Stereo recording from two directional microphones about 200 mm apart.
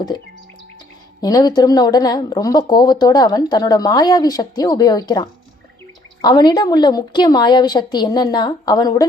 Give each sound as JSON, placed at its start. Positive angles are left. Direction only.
{"t": 1.2, "sound": "speech", "side_deg": 20}